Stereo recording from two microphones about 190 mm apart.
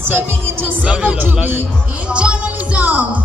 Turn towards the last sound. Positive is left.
turn(degrees=-10)  # may be behind; listen again after turning